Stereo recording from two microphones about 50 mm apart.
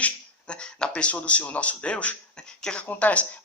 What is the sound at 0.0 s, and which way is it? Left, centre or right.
Speech, left.